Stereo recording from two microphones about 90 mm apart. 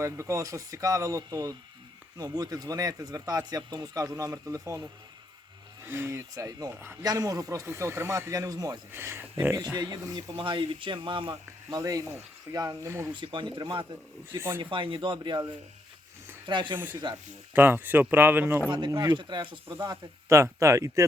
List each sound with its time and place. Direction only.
0.0 s speech: 35° right (ahead or behind)
8.9 s speech: 25° right (ahead or behind)
9.6 s speech: 50° right (ahead or behind)
10.3 s speech: 70° right (ahead or behind)
11.7 s speech: 40° right (ahead or behind)
13.1 s speech: 60° right (ahead or behind)
14.3 s speech: 25° right (ahead or behind)
14.6 s speech: 70° right (ahead or behind)
16.5 s speech: 60° right (ahead or behind)
16.7 s speech: 20° right (ahead or behind)
18.9 s speech: 50° right (ahead or behind); by 19.9 s 70° right (ahead or behind)
20.2 s speech: 35° right (ahead or behind)